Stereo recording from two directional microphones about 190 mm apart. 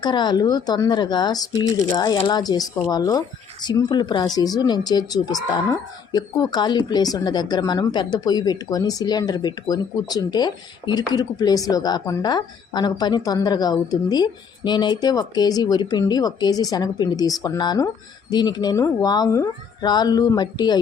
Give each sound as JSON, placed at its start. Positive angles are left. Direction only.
{"t": 0.0, "sound": "speech", "side_deg": 25}